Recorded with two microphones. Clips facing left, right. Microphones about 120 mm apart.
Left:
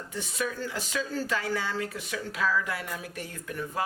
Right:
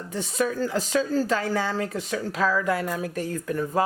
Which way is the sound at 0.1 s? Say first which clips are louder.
Right 7 dB; 40° right (ahead or behind).